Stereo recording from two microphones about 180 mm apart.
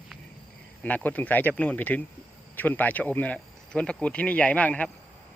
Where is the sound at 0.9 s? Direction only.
10° left (ahead or behind).